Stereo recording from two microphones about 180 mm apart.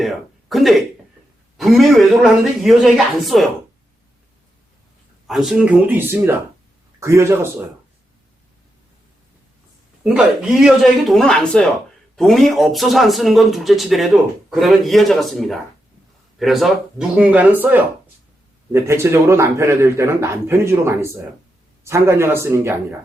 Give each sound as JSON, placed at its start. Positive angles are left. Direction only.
{"t": 0.0, "sound": "speech", "side_deg": 0}
{"t": 5.3, "sound": "speech", "side_deg": 0}
{"t": 10.0, "sound": "speech", "side_deg": -5}